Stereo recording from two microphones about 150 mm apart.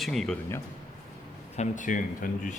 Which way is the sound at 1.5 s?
60° left (ahead or behind).